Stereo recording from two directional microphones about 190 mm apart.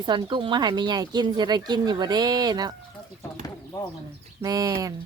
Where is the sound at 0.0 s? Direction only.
25° right (ahead or behind).